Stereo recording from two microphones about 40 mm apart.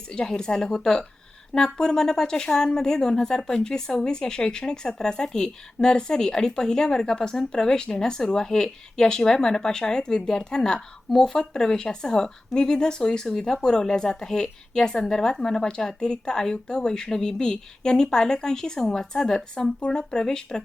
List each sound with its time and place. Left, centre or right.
0.1 s a woman's voice: centre